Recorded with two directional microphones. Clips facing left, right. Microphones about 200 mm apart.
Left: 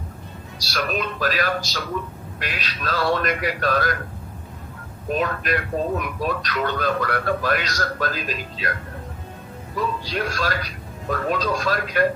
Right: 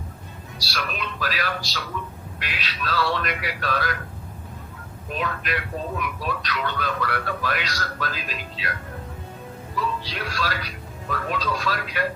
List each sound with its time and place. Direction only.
0.6 s speech: 45° left (ahead or behind)
5.0 s speech: 45° left (ahead or behind)
9.7 s speech: 45° left (ahead or behind)